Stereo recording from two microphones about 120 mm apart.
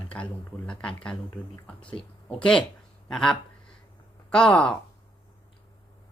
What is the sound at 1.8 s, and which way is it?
Speech, 45° left (ahead or behind).